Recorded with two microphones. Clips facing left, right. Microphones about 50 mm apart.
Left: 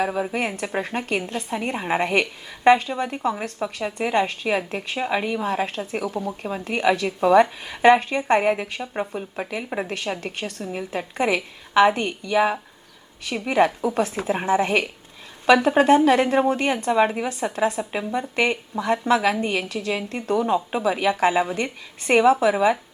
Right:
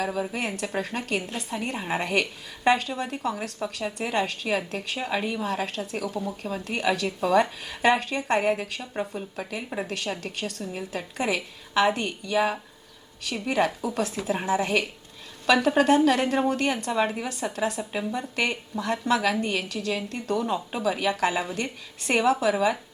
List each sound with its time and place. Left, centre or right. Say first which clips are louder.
0.0 s a woman's voice: left 4 dB; left
5.4 s a woman's voice: left 4 dB; left